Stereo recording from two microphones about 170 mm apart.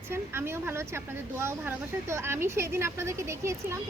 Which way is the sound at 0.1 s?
15° right (ahead or behind).